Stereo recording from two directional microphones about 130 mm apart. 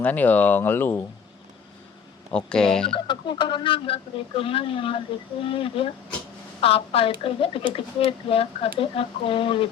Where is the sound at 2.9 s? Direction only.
35° left (ahead or behind).